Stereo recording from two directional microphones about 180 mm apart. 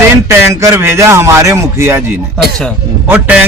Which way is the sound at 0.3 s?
15° right (ahead or behind).